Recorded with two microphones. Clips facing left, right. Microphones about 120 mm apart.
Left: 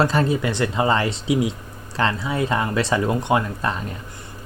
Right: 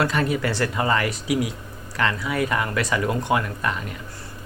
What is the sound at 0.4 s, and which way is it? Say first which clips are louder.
Speech: left 2 dB; 20° left (ahead or behind).